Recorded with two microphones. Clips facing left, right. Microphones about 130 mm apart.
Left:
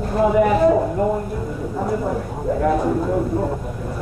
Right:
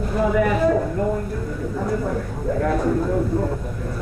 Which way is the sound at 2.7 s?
10° left (ahead or behind).